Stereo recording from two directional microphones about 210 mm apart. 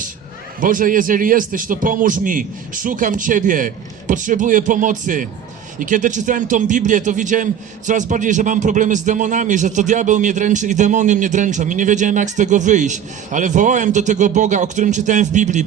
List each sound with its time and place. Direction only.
0.6 s a man's voice: 40° right (ahead or behind)